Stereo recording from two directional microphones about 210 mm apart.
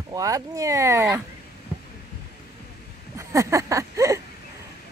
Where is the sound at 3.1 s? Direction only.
15° right (ahead or behind).